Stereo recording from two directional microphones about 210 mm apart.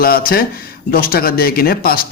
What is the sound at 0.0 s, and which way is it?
Speech, 45° left (ahead or behind).